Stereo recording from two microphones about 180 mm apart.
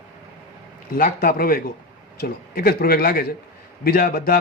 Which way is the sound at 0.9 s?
50° left (ahead or behind).